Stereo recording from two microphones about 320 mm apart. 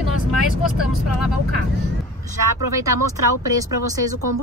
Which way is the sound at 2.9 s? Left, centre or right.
Right.